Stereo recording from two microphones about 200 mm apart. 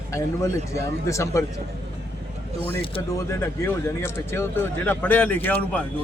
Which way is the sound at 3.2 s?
15° left (ahead or behind).